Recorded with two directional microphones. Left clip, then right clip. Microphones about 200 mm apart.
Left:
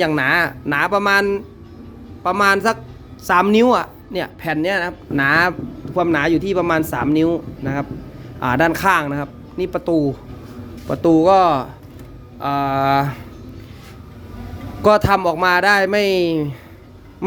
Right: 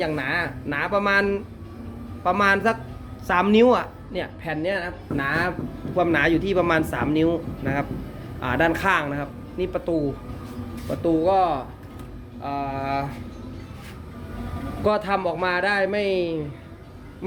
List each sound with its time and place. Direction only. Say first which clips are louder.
0.0 s speech: left 9 dB; 50° left (ahead or behind)
6.0 s speech: left 3 dB; 30° left (ahead or behind); by 13.1 s 50° left (ahead or behind)
14.8 s speech: left 9 dB; 45° left (ahead or behind)